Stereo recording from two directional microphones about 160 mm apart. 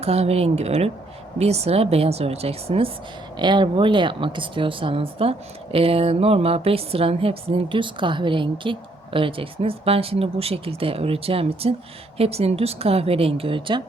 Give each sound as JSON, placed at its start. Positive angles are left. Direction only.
{"t": 0.0, "sound": "a woman's voice", "side_deg": -40}